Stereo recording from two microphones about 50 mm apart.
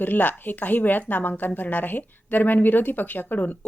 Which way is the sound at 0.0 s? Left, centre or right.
Left.